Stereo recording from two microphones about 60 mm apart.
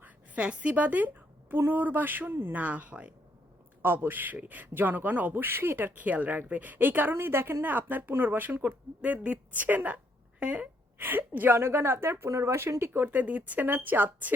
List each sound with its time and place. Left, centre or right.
0.0 s a woman's voice: right
3.8 s a man's voice: right
10.9 s a man's voice: right